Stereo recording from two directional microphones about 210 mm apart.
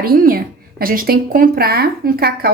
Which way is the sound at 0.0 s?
45° right (ahead or behind).